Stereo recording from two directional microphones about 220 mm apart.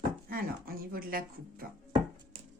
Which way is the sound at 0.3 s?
40° right (ahead or behind).